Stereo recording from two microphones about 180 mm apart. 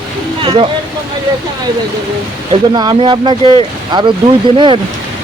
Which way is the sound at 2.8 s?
25° right (ahead or behind).